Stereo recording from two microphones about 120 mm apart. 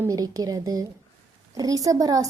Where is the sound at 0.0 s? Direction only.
30° right (ahead or behind).